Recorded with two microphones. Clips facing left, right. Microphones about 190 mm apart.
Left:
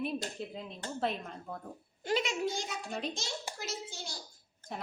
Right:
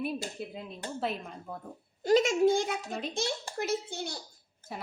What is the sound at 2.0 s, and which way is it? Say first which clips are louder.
Speech: right 9 dB; 40° right (ahead or behind).